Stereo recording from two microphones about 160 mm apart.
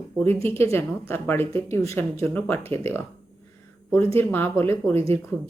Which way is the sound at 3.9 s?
15° left (ahead or behind).